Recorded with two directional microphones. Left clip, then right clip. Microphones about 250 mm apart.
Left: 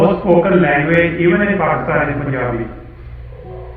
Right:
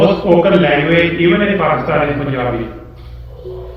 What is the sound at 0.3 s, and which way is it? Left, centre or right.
A man's voice, right.